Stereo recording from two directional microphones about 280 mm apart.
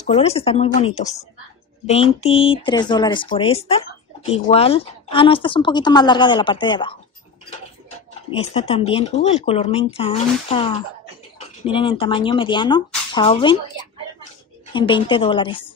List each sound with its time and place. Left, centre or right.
0.0 s speech: left
8.4 s speech: left
14.7 s speech: centre